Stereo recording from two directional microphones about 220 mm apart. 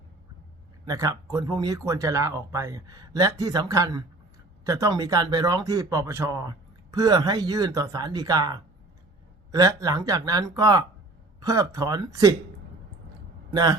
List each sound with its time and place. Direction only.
0.9 s speech: 15° right (ahead or behind)
13.5 s speech: 15° right (ahead or behind)